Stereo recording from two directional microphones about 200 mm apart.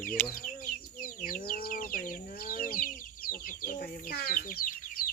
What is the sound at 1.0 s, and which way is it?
Speech, 45° left (ahead or behind).